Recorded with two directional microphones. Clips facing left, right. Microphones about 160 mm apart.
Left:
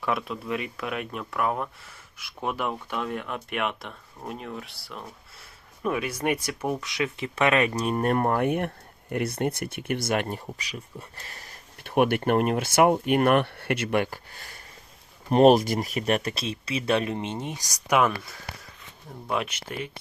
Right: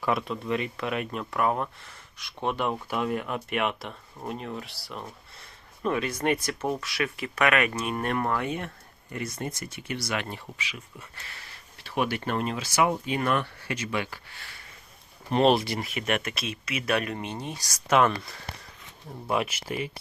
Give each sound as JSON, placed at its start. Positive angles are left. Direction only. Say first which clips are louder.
{"t": 0.0, "sound": "speech", "louder": "right 1 dB", "side_deg": 0}
{"t": 19.3, "sound": "speech", "louder": "right 1 dB", "side_deg": -5}